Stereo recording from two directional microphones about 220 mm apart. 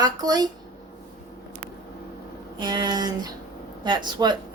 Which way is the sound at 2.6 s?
20° right (ahead or behind).